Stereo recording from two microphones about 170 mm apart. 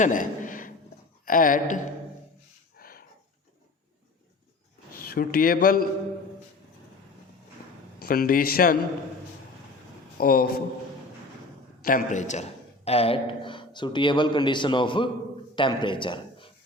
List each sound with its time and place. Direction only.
0.0 s a sound: 50° left (ahead or behind)
1.2 s speech: 55° left (ahead or behind)
2.7 s a sound: 60° left (ahead or behind)
4.9 s a man's voice: 60° left (ahead or behind)
8.0 s speech: 60° left (ahead or behind)
10.2 s speech: 60° left (ahead or behind)
11.8 s a man's voice: 55° left (ahead or behind); by 16.5 s 30° left (ahead or behind)